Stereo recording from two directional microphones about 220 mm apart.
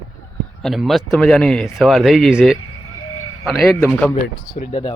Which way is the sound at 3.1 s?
75° left (ahead or behind).